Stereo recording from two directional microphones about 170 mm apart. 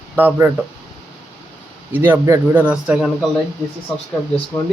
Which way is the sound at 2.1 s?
15° right (ahead or behind).